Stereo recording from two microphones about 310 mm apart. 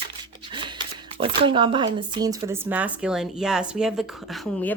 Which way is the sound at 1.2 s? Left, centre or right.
Centre.